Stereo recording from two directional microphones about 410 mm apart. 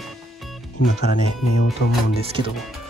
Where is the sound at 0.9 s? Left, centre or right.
Centre.